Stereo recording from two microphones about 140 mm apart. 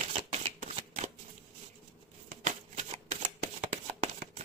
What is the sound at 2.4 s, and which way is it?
Shuffling cards, 55° right (ahead or behind).